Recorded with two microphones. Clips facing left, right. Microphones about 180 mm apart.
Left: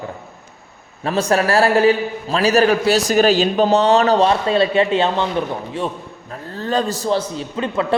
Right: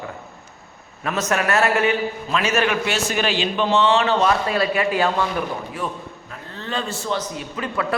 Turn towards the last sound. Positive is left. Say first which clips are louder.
# left 5 dB
turn(degrees=25)  # may be behind; listen again after turning